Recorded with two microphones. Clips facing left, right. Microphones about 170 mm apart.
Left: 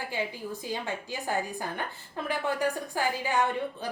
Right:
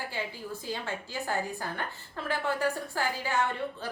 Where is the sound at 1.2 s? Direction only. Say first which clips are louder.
Left 1 dB; 15° left (ahead or behind).